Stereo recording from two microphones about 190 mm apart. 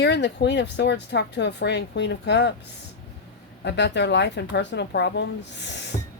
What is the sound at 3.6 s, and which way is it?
Speech, 65° left (ahead or behind).